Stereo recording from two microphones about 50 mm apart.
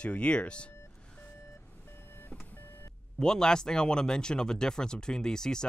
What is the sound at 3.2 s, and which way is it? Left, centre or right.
Speech, centre.